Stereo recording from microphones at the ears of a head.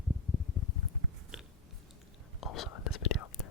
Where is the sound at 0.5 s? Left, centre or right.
Left.